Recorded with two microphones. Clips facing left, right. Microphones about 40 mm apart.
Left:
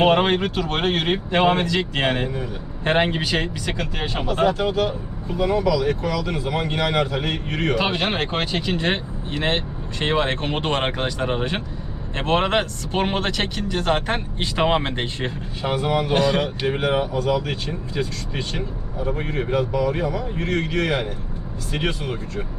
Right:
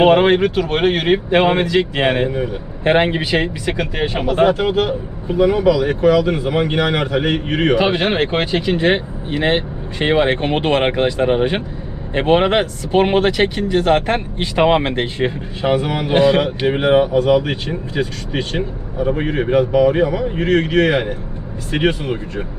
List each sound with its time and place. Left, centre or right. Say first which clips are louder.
0.0 s speech: right 6 dB; centre
4.3 s a man's voice: right 5 dB; right
7.8 s speech: right 6 dB; centre
14.9 s speech: right 7 dB; centre
15.6 s a man's voice: right 4 dB; right